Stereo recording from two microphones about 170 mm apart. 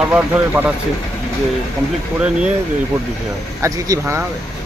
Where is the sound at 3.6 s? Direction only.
15° right (ahead or behind).